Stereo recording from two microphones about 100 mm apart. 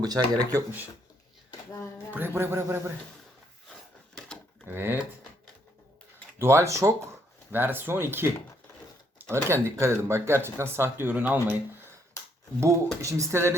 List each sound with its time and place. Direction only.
0.0 s speech: 40° right (ahead or behind)
2.1 s speech: 20° right (ahead or behind)
4.1 s typewriter: 5° left (ahead or behind)
4.6 s speech: 20° right (ahead or behind)
6.4 s speech: 25° right (ahead or behind)
7.5 s speech: 20° right (ahead or behind)
12.5 s speech: 30° right (ahead or behind)